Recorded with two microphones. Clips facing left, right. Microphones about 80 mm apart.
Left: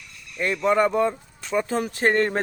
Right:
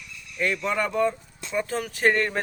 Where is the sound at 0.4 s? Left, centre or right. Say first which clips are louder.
Left 5 dB; left.